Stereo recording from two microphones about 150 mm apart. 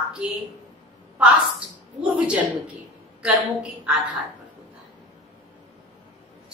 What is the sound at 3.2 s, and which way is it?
Speech, 5° right (ahead or behind).